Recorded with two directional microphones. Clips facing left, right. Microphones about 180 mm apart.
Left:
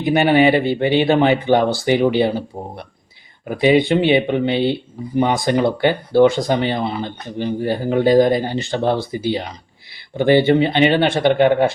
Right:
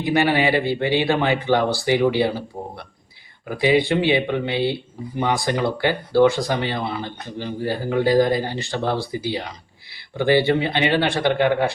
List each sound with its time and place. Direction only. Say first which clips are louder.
0.0 s speech: left 5 dB; 20° left (ahead or behind)